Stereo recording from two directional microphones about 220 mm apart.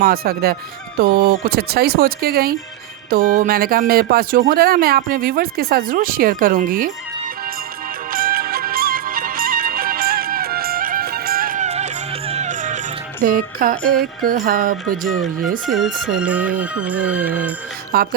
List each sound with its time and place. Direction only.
0.0 s speech: 40° right (ahead or behind)
8.1 s music: 40° right (ahead or behind)
13.2 s speech: 40° right (ahead or behind)
15.6 s speech: centre (ahead or behind)
16.2 s music: 5° right (ahead or behind)
17.9 s speech: 45° right (ahead or behind)